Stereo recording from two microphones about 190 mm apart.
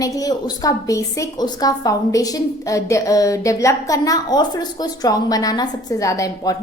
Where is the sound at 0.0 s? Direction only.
20° left (ahead or behind).